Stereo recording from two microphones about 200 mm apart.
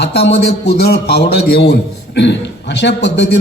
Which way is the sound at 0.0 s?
55° left (ahead or behind).